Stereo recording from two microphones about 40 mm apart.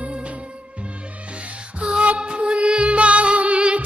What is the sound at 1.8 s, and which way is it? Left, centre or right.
Music, right.